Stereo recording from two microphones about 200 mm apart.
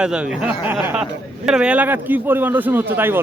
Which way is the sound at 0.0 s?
5° right (ahead or behind).